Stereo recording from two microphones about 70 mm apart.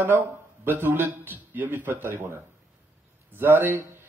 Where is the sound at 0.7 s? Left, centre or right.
Right.